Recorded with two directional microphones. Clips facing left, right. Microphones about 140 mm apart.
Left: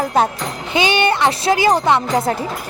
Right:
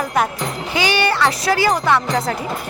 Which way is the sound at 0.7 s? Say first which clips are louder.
Left 2 dB; 20° left (ahead or behind).